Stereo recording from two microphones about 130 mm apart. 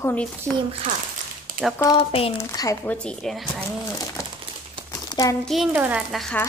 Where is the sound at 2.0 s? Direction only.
45° left (ahead or behind).